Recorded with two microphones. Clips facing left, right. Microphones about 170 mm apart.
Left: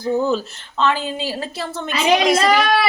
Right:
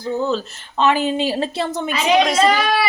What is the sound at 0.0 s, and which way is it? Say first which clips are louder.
Speech: left 2 dB; 15° left (ahead or behind).